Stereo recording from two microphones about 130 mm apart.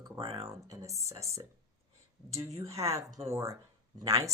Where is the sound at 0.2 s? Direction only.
45° right (ahead or behind).